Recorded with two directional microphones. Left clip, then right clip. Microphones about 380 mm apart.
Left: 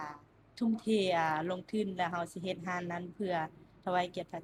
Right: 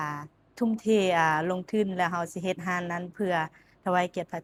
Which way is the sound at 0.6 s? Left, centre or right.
Right.